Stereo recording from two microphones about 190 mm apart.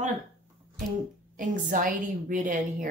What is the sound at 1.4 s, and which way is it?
A woman's voice, 45° right (ahead or behind).